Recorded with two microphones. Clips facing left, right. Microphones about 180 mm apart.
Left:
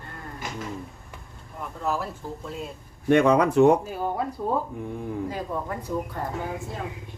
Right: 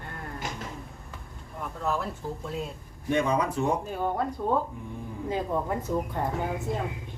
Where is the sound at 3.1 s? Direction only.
70° left (ahead or behind).